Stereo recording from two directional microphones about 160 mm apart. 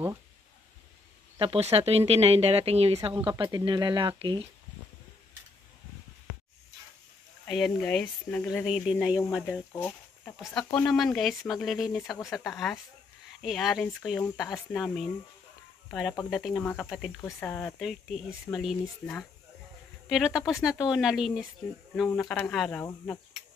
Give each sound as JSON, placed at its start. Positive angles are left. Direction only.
{"t": 1.4, "sound": "speech", "side_deg": -35}
{"t": 3.5, "sound": "speech", "side_deg": -25}
{"t": 7.4, "sound": "speech", "side_deg": 0}
{"t": 9.7, "sound": "a sound", "side_deg": 15}
{"t": 10.4, "sound": "speech", "side_deg": 5}